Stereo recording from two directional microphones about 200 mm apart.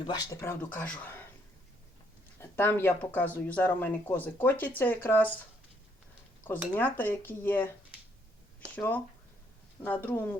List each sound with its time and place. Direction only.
0.0 s speech: 20° left (ahead or behind)
0.6 s speech: 10° left (ahead or behind)
2.6 s speech: 10° left (ahead or behind)
6.7 s speech: 10° left (ahead or behind)
8.7 s speech: 10° left (ahead or behind)